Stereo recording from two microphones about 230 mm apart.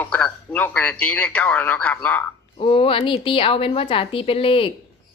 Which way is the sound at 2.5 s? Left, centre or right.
Left.